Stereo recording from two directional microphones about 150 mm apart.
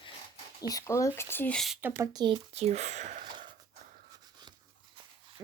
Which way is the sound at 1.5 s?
Centre (ahead or behind).